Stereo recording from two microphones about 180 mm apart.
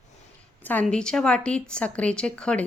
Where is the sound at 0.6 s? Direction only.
10° left (ahead or behind).